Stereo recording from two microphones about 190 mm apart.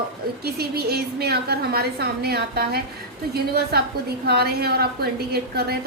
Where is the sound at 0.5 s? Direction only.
55° right (ahead or behind).